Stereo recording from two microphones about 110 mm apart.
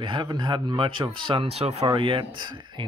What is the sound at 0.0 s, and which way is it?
Speech, 45° right (ahead or behind).